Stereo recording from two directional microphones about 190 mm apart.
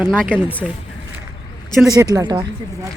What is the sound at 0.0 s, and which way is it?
Speech, 5° left (ahead or behind).